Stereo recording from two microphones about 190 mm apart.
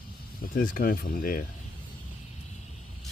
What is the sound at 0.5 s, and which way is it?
Speech, 45° left (ahead or behind).